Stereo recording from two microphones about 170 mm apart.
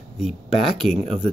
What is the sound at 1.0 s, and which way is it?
Speech, 35° right (ahead or behind).